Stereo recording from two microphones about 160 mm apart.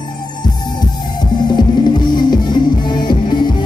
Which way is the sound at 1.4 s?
25° left (ahead or behind).